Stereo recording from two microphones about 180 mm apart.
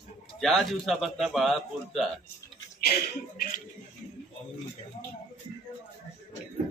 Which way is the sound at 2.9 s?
55° left (ahead or behind).